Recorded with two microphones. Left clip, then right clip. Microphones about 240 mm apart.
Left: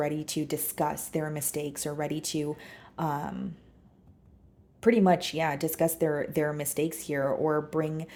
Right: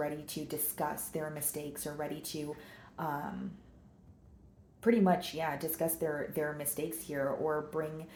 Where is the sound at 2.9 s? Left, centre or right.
Left.